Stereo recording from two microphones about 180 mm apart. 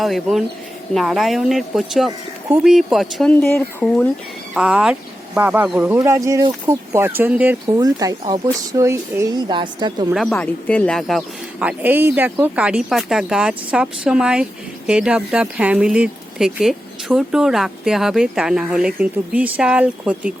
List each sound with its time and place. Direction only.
0.0 s speech: centre (ahead or behind)
4.5 s speech: 5° right (ahead or behind)
7.8 s speech: 20° right (ahead or behind)
10.1 s speech: centre (ahead or behind)
11.6 s speech: 10° right (ahead or behind)